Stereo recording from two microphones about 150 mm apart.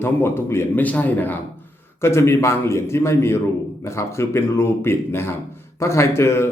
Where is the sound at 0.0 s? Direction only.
15° left (ahead or behind).